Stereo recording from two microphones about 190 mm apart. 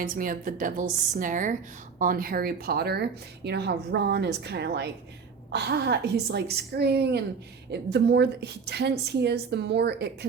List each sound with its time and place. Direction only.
0.0 s a woman's voice: 45° right (ahead or behind)